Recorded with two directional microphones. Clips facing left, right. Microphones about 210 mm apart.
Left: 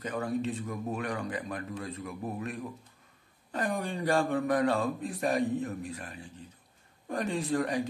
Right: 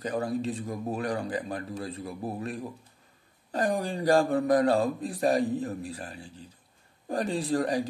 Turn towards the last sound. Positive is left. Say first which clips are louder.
# right 3 dB
turn(degrees=-35)  # may be behind; listen again after turning